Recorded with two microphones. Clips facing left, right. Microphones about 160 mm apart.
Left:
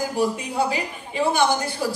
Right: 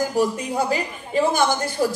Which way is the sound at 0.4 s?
40° right (ahead or behind).